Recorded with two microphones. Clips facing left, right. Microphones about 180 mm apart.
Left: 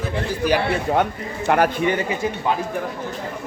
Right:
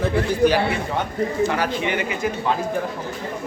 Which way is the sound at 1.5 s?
50° left (ahead or behind).